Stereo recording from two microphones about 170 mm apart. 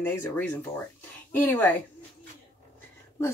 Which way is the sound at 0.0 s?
15° left (ahead or behind).